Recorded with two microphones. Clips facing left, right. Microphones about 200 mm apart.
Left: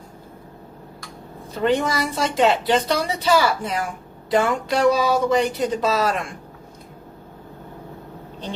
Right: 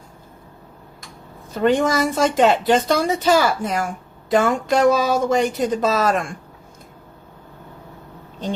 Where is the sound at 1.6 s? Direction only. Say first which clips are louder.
Right 3 dB; 45° right (ahead or behind).